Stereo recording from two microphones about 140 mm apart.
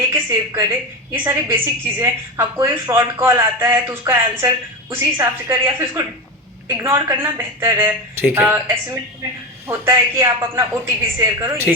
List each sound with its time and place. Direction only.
0.1 s a woman's voice: 15° right (ahead or behind)